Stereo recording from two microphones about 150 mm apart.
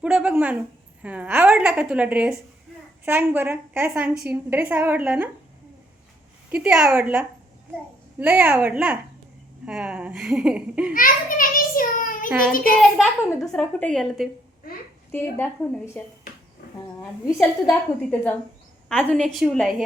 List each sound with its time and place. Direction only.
0.0 s a woman's voice: 10° right (ahead or behind)
6.5 s a woman's voice: 5° right (ahead or behind)
10.9 s a child's voice: 65° left (ahead or behind)
12.7 s a woman's voice: 10° left (ahead or behind)
17.2 s speech: 5° right (ahead or behind)
18.1 s a woman's voice: 10° left (ahead or behind)